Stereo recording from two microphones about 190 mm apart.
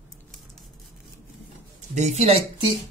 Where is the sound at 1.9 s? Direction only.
35° right (ahead or behind).